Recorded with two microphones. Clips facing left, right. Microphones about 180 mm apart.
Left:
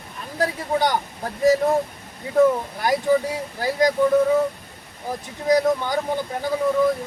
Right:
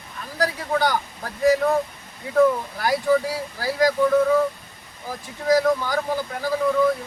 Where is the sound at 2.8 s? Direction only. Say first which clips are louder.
Even; 20° left (ahead or behind).